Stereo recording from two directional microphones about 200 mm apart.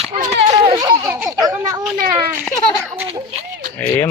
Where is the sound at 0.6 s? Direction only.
20° right (ahead or behind).